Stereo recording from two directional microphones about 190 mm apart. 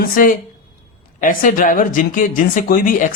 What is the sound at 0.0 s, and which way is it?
Speech, 45° left (ahead or behind).